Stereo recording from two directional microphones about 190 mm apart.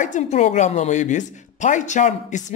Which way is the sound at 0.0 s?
40° left (ahead or behind).